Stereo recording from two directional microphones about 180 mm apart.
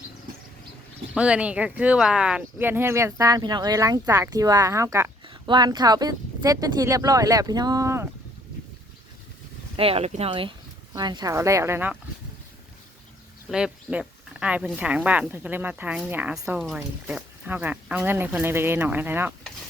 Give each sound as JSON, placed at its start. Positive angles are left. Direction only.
{"t": 1.1, "sound": "speech", "side_deg": -5}
{"t": 5.2, "sound": "speech", "side_deg": -25}
{"t": 9.7, "sound": "speech", "side_deg": -30}
{"t": 13.5, "sound": "speech", "side_deg": -5}